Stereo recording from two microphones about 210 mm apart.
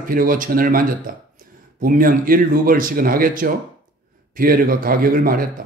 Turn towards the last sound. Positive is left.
turn(degrees=-40)  # may be behind; listen again after turning